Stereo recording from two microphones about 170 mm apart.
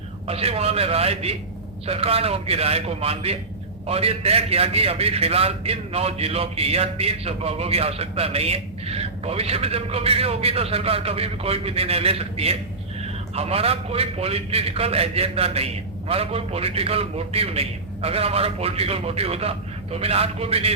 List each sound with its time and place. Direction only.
0.3 s a man's voice: 35° right (ahead or behind)